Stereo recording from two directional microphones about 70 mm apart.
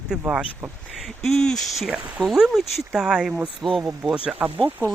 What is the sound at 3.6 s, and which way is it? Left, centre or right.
Speech, centre.